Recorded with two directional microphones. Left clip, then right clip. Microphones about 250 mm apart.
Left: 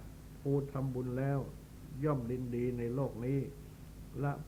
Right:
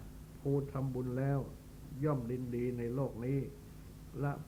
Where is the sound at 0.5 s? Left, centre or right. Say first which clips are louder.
Left 1 dB; right.